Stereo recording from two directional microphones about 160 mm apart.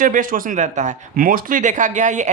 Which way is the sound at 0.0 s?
55° right (ahead or behind).